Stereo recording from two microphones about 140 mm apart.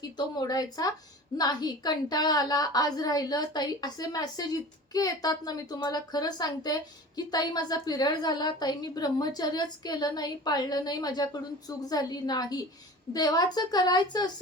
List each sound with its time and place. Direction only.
0.0 s a woman's voice: 30° left (ahead or behind)